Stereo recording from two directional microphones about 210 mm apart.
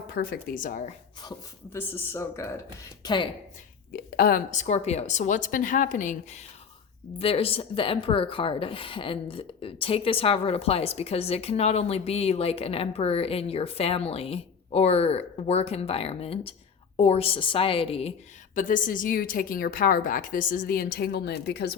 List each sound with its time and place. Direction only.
0.1 s a woman's voice: 45° left (ahead or behind)
1.2 s speech: 15° left (ahead or behind)
3.9 s a woman's voice: 45° left (ahead or behind); by 18.1 s 25° left (ahead or behind)
18.5 s a woman's voice: 40° left (ahead or behind)